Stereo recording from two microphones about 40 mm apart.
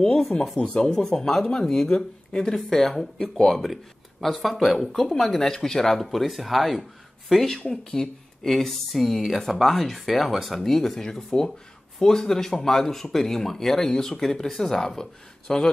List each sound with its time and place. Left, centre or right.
0.3 s speech: left
0.7 s speech: centre
6.0 s speech: centre